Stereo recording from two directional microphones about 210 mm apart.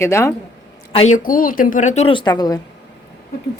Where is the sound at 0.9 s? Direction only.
35° left (ahead or behind); by 2.6 s 20° left (ahead or behind).